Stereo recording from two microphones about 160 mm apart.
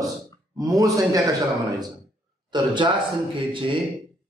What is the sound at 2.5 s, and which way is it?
A man's voice, 30° right (ahead or behind).